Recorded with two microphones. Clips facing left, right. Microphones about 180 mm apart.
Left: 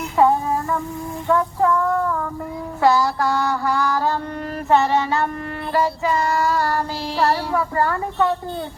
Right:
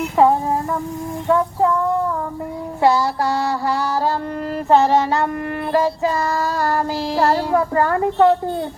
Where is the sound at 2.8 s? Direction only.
25° right (ahead or behind).